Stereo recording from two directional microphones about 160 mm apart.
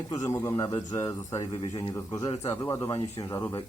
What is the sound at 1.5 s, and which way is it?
Speech, 35° left (ahead or behind).